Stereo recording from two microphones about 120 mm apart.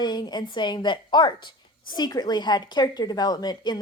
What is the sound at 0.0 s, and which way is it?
A woman's voice, 35° left (ahead or behind).